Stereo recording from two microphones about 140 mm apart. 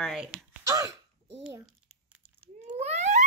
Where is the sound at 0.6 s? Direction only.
25° right (ahead or behind).